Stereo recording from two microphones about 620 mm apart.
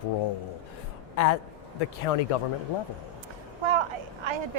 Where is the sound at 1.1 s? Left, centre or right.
Left.